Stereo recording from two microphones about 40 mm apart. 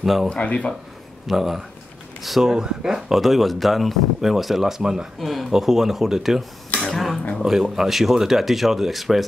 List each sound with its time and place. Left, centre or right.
0.0 s speech: centre
0.3 s speech: left
1.2 s speech: centre
2.4 s speech: centre
3.2 s speech: centre
5.2 s speech: centre
6.8 s speech: centre
7.4 s speech: centre